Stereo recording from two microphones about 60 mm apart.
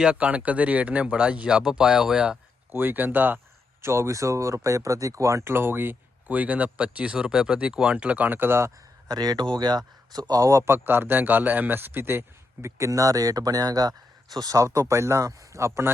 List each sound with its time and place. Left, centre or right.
0.0 s speech: centre
2.7 s speech: right
3.8 s speech: right
9.0 s speech: right
10.2 s speech: right
12.6 s speech: right